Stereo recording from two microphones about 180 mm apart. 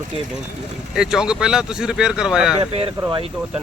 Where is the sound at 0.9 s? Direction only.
5° right (ahead or behind).